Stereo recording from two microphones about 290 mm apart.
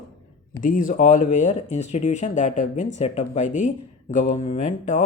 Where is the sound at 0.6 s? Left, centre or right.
Left.